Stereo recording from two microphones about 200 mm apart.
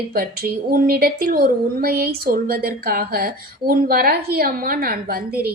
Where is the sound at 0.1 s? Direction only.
50° right (ahead or behind).